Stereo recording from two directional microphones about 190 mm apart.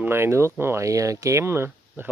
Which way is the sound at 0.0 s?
15° right (ahead or behind).